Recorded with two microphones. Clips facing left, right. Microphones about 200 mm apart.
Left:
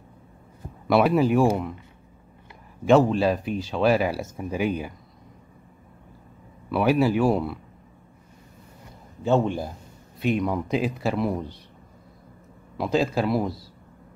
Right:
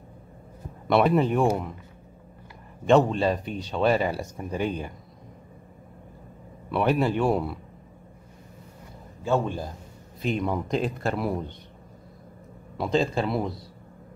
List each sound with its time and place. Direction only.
0.8 s speech: 5° left (ahead or behind)
2.8 s speech: 5° left (ahead or behind)
6.7 s speech: 5° left (ahead or behind)
9.2 s a man's voice: 20° left (ahead or behind)
10.2 s speech: centre (ahead or behind)
12.7 s speech: 5° left (ahead or behind)